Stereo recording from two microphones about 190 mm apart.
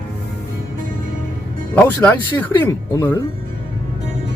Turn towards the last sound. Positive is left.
turn(degrees=15)  # may be behind; listen again after turning